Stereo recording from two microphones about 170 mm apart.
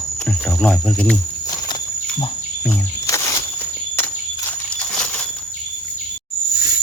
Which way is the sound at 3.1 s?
20° left (ahead or behind).